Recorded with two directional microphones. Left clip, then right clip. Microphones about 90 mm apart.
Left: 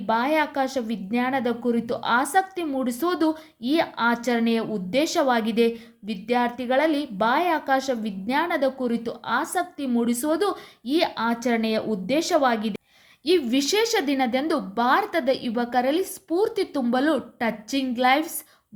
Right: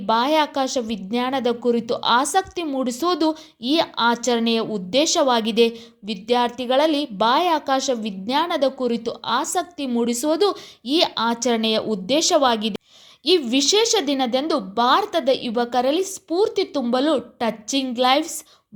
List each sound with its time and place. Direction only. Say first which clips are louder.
0.0 s a woman's voice: right 4 dB; 35° right (ahead or behind)
13.4 s a woman's voice: right 4 dB; 20° right (ahead or behind)